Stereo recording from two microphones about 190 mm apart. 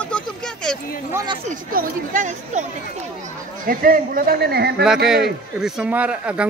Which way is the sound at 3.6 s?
50° right (ahead or behind).